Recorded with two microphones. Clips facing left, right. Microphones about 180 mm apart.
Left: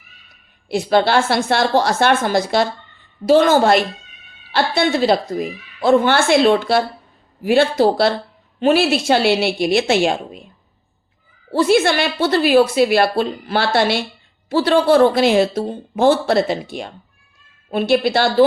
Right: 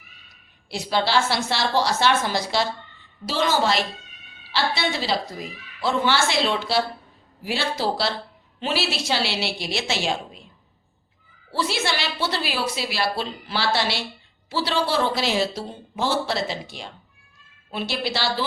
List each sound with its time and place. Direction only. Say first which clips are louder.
0.7 s a woman's voice: left 7 dB; 55° left (ahead or behind)
11.5 s a woman's voice: left 11 dB; 50° left (ahead or behind)